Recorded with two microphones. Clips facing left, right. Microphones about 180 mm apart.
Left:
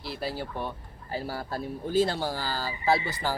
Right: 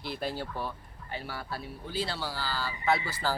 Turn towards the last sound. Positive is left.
turn(degrees=15)  # may be behind; listen again after turning